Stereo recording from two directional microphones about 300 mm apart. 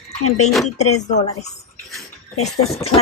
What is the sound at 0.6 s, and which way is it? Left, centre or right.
Speech, left.